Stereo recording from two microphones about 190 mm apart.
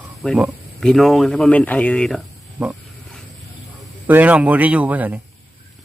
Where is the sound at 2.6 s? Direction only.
10° right (ahead or behind).